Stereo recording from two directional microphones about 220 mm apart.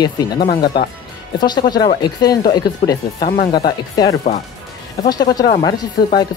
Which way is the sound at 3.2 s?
45° left (ahead or behind).